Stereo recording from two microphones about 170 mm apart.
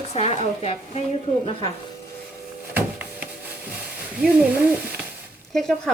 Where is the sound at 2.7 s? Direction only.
10° right (ahead or behind).